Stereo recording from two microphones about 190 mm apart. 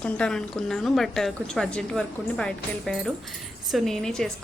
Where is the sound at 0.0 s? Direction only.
5° left (ahead or behind).